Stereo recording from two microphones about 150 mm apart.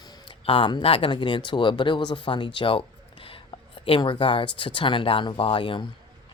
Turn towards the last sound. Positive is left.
turn(degrees=35)  # may be behind; listen again after turning